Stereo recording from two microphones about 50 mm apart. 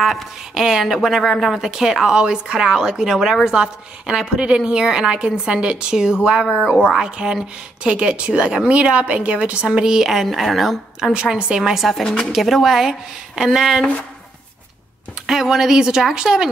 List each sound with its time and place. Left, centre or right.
0.0 s a woman's voice: centre
7.0 s a woman's voice: centre
10.2 s speech: centre
11.1 s a woman's voice: centre
15.2 s a woman's voice: centre